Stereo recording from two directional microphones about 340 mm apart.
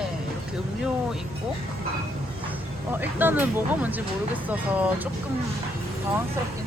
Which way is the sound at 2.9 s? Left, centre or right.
Centre.